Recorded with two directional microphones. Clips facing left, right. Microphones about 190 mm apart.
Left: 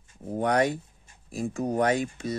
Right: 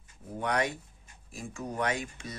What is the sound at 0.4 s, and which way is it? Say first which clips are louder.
Speech: left 6 dB; 35° left (ahead or behind).